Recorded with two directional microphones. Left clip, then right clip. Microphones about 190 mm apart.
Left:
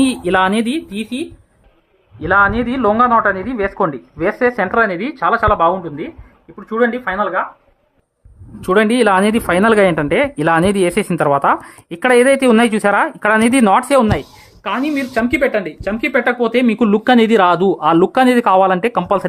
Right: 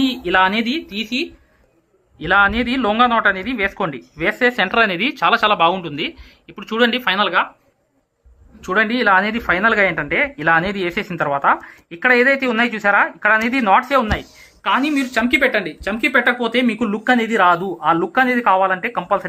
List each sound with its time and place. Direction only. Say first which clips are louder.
0.3 s speech: right 1 dB; 55° left (ahead or behind)
2.3 s speech: left 2 dB; 5° left (ahead or behind)
5.2 s speech: left 2 dB; 15° right (ahead or behind)
8.6 s speech: left 4 dB; 65° left (ahead or behind)